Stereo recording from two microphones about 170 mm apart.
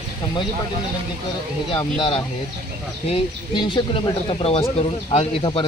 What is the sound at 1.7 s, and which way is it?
Speech, 30° left (ahead or behind).